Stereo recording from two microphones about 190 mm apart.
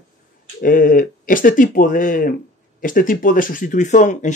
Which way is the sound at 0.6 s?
45° left (ahead or behind).